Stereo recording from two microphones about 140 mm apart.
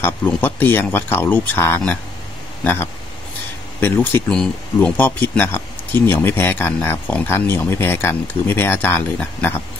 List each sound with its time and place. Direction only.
0.0 s speech: 15° left (ahead or behind)